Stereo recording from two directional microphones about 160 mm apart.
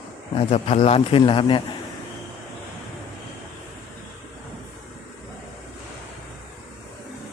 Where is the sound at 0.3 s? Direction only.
40° left (ahead or behind).